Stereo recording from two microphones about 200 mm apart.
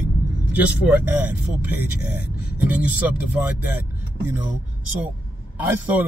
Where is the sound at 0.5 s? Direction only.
10° right (ahead or behind).